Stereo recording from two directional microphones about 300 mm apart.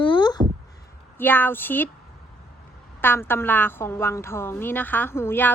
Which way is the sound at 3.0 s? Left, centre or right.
Centre.